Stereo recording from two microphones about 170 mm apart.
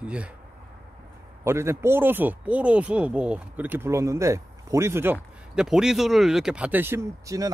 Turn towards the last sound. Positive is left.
turn(degrees=-20)  # may be behind; listen again after turning